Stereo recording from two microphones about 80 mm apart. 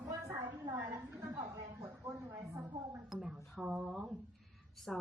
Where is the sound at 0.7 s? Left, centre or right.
Right.